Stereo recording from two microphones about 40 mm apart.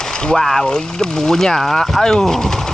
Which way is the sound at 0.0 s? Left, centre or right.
Centre.